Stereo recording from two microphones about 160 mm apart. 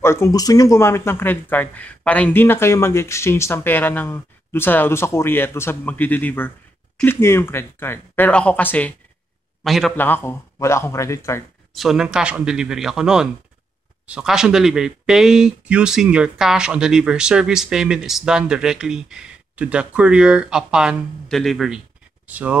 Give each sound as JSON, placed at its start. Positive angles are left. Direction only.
{"t": 0.0, "sound": "a man's voice", "side_deg": 15}
{"t": 9.9, "sound": "speech", "side_deg": 10}
{"t": 11.7, "sound": "speech", "side_deg": 0}